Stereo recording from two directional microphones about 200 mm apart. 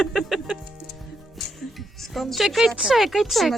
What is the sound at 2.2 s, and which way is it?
Speech, centre (ahead or behind).